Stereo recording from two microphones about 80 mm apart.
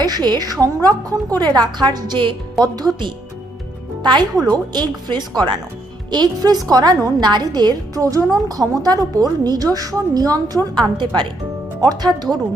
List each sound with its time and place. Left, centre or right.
0.0 s a woman's voice: right
2.6 s a woman's voice: right
4.0 s a woman's voice: right
10.8 s a woman's voice: right
11.8 s a woman's voice: right